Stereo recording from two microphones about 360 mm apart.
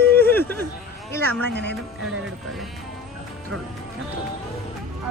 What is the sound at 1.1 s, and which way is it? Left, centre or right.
Speech, centre.